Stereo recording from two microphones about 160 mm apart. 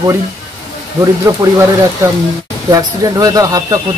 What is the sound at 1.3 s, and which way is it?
Speech, 20° right (ahead or behind).